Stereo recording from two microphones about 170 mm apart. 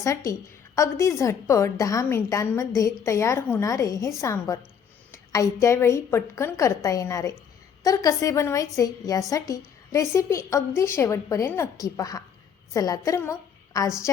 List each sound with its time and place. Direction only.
0.8 s a woman's voice: 15° left (ahead or behind)